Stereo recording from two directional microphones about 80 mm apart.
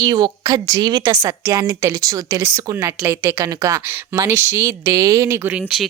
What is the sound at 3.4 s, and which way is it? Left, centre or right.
Speech, right.